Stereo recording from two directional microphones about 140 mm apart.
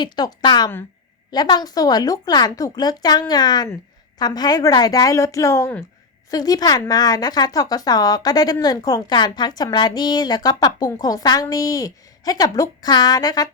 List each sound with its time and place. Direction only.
0.0 s a woman's voice: 30° left (ahead or behind)